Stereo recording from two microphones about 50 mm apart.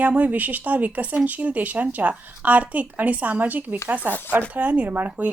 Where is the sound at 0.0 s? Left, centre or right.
Right.